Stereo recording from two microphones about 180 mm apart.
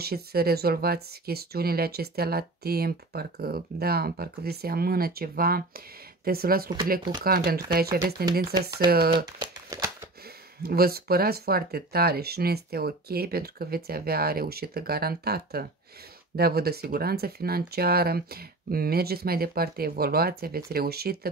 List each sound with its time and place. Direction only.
0.0 s speech: 60° right (ahead or behind)
9.4 s speech: 20° right (ahead or behind)
10.6 s speech: 60° right (ahead or behind)